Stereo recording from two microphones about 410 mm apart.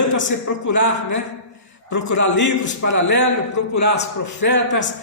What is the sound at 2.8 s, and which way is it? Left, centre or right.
A man's voice, left.